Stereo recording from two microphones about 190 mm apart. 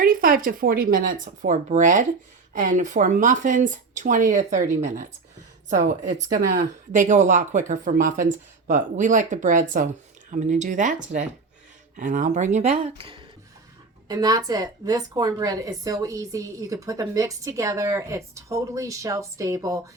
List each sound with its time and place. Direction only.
0.0 s speech: 50° right (ahead or behind)
6.1 s a woman's voice: 40° right (ahead or behind); by 19.8 s 15° right (ahead or behind)